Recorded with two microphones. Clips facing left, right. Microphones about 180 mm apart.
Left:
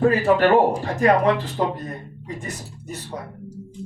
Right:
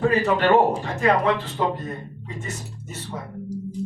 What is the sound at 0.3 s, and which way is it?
Speech, 35° left (ahead or behind).